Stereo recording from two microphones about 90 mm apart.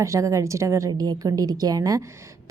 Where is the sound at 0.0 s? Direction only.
35° right (ahead or behind).